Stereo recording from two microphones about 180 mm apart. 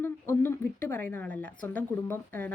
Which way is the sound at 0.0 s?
15° left (ahead or behind).